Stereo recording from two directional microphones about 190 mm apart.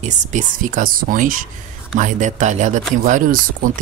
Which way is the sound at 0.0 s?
40° right (ahead or behind).